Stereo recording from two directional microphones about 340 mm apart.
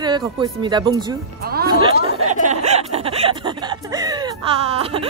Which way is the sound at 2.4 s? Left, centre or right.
Centre.